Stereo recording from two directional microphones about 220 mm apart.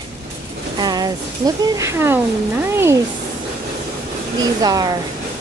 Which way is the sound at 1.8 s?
10° right (ahead or behind).